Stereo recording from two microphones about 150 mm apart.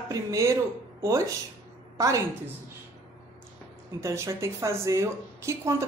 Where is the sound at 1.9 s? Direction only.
20° right (ahead or behind).